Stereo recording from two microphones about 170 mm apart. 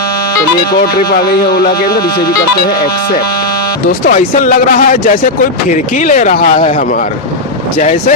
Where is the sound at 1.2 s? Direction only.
65° left (ahead or behind).